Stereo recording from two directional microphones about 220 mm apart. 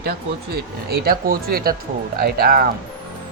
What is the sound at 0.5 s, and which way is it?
Speech, 45° right (ahead or behind).